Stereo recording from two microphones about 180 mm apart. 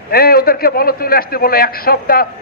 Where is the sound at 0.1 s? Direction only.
55° left (ahead or behind).